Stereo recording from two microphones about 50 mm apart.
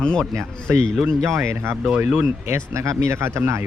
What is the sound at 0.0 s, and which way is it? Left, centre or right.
Speech, centre.